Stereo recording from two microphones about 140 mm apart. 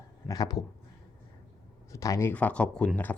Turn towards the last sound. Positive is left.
turn(degrees=10)  # may be behind; listen again after turning